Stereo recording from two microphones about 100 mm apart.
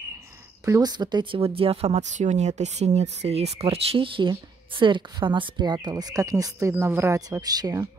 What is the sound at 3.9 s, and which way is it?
A woman's voice, 55° right (ahead or behind).